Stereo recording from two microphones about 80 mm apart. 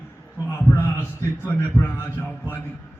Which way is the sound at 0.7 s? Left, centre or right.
Left.